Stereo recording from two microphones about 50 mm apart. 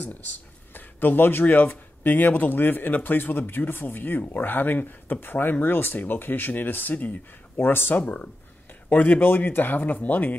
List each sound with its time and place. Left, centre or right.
0.0 s speech: left
8.0 s speech: left
8.8 s speech: left